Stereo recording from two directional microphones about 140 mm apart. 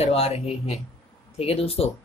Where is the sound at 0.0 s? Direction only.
50° left (ahead or behind).